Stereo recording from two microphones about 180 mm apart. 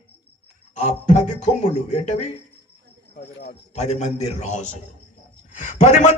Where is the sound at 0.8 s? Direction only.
40° left (ahead or behind).